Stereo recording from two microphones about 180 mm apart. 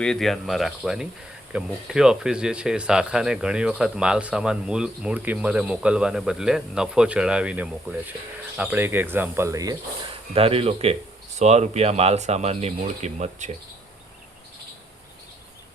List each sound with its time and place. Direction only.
0.0 s speech: 5° left (ahead or behind); by 9.7 s 20° right (ahead or behind)
10.1 s speech: 30° right (ahead or behind)